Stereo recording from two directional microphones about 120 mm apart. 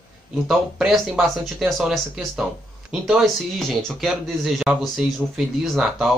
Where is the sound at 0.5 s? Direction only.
Centre (ahead or behind).